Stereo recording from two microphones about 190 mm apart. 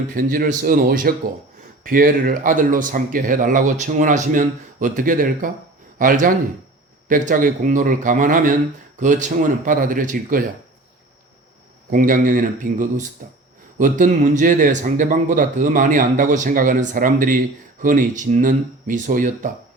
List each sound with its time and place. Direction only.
0.1 s speech: 45° right (ahead or behind)
11.9 s speech: 45° right (ahead or behind)